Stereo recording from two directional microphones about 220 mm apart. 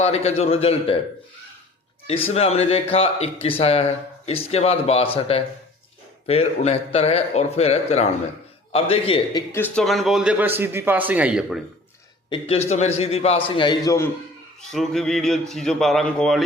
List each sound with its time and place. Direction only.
0.0 s a man's voice: 30° left (ahead or behind)
2.0 s a man's voice: 25° left (ahead or behind)
9.5 s speech: 5° left (ahead or behind)
12.3 s a man's voice: 25° left (ahead or behind)
14.6 s speech: centre (ahead or behind)